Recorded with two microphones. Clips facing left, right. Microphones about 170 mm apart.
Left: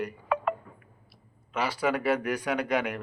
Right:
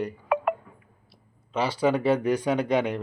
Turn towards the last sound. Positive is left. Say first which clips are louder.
# right 4 dB
turn(degrees=-25)  # may be behind; listen again after turning